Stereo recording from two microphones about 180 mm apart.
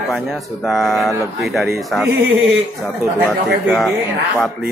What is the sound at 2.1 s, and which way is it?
Speech, 10° right (ahead or behind).